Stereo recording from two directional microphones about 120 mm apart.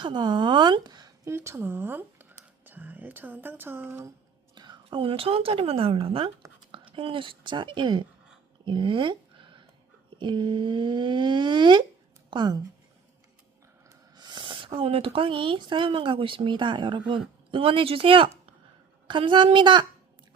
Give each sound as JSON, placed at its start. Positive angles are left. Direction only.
{"t": 0.0, "sound": "speech", "side_deg": -40}
{"t": 4.5, "sound": "a woman's voice", "side_deg": -40}
{"t": 8.6, "sound": "a sound", "side_deg": -45}
{"t": 10.2, "sound": "speech", "side_deg": -40}
{"t": 14.2, "sound": "a woman's voice", "side_deg": -40}